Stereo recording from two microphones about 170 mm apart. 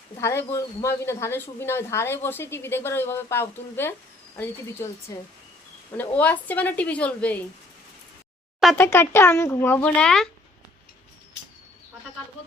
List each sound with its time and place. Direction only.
0.2 s speech: 15° left (ahead or behind)
8.8 s speech: 15° left (ahead or behind)